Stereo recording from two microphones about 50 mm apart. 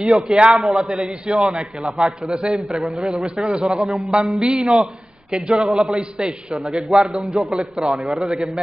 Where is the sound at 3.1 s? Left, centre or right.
Centre.